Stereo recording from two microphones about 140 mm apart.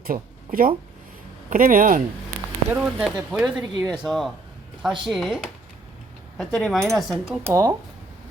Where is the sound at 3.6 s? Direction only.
30° right (ahead or behind).